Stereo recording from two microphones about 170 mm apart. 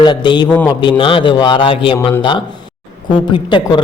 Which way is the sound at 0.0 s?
25° left (ahead or behind).